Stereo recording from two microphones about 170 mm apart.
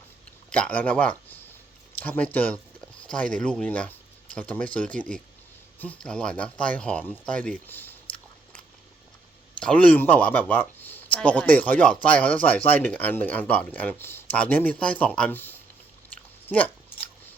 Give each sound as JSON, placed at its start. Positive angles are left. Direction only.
{"t": 0.5, "sound": "speech", "side_deg": 5}
{"t": 9.6, "sound": "speech", "side_deg": 5}